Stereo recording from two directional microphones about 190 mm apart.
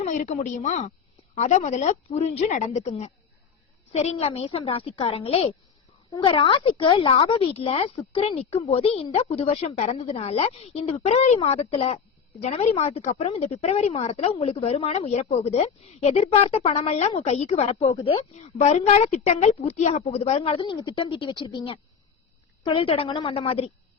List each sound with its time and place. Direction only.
0.0 s a woman's voice: 40° left (ahead or behind)